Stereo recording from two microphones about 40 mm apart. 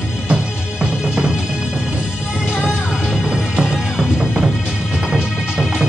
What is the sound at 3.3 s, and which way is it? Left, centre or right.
Music, centre.